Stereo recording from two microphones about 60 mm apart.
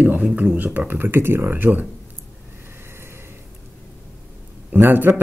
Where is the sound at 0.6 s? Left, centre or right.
Right.